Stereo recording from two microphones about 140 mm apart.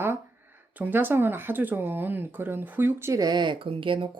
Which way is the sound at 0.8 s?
15° right (ahead or behind).